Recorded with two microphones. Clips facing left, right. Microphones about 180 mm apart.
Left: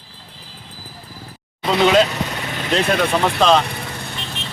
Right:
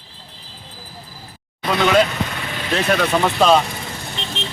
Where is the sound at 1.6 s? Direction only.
25° left (ahead or behind).